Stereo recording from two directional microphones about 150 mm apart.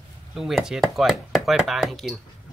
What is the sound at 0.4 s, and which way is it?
Speech, centre (ahead or behind).